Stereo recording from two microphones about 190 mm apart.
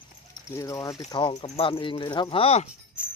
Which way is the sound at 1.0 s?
30° left (ahead or behind).